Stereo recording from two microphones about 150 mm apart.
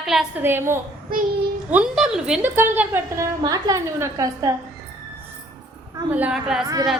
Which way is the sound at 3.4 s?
25° right (ahead or behind).